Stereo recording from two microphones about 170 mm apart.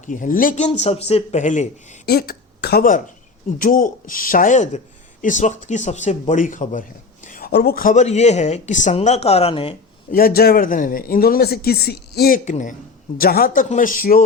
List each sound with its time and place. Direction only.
0.0 s speech: 50° left (ahead or behind)
2.0 s speech: 65° left (ahead or behind); by 6.8 s 45° left (ahead or behind)
7.3 s speech: 60° left (ahead or behind); by 9.7 s 35° left (ahead or behind)
10.1 s speech: 60° left (ahead or behind)
12.5 s speech: 50° left (ahead or behind)
13.1 s speech: 60° left (ahead or behind)